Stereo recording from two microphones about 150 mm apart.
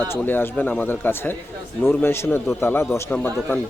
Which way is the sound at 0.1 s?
15° left (ahead or behind).